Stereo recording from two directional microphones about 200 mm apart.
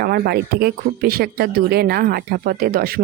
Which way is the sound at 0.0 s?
50° right (ahead or behind).